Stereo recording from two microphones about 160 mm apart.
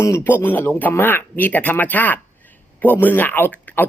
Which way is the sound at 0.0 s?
15° left (ahead or behind).